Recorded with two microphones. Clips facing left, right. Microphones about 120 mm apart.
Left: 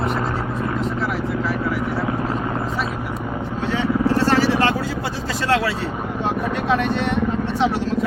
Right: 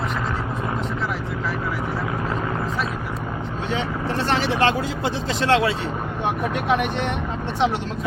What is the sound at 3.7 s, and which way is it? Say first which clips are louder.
Vehicle: left 7 dB; 20° right (ahead or behind).